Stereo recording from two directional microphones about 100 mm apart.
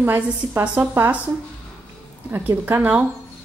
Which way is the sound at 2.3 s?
20° right (ahead or behind).